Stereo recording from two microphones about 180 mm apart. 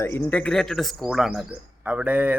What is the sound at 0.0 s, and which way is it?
Speech, 10° left (ahead or behind).